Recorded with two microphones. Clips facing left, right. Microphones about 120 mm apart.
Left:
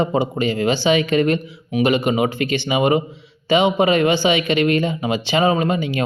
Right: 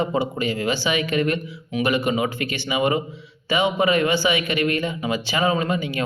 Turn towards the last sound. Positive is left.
turn(degrees=25)  # may be behind; listen again after turning